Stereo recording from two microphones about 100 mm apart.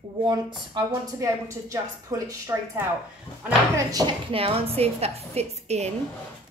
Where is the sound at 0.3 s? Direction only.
50° right (ahead or behind).